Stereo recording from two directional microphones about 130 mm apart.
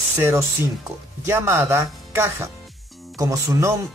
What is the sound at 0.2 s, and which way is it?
Speech, 20° right (ahead or behind).